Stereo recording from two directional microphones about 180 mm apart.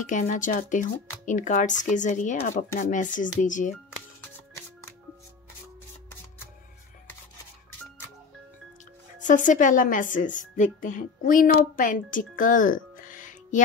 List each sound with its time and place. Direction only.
0.0 s speech: 45° left (ahead or behind)
9.2 s a woman's voice: 45° left (ahead or behind)